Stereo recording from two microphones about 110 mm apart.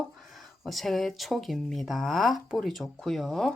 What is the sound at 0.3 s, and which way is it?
Speech, centre (ahead or behind).